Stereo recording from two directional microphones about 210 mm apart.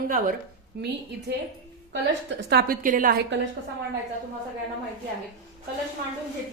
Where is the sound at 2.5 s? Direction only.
45° right (ahead or behind).